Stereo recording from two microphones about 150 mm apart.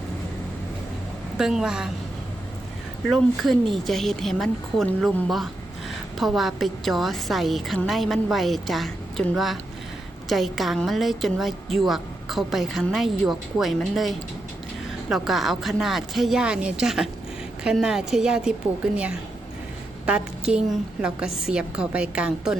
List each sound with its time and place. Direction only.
1.4 s a woman's voice: 5° right (ahead or behind)
3.1 s a woman's voice: centre (ahead or behind)
20.1 s a woman's voice: 5° right (ahead or behind)